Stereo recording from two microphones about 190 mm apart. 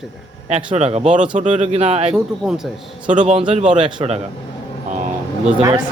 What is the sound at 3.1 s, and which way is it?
A man's voice, 40° right (ahead or behind).